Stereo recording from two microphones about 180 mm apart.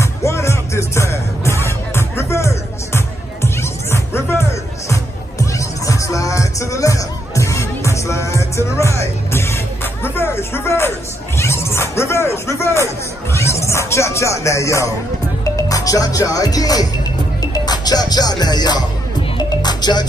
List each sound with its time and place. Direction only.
0.0 s music: 15° left (ahead or behind)
15.4 s speech: 20° left (ahead or behind)
17.4 s music: 20° left (ahead or behind)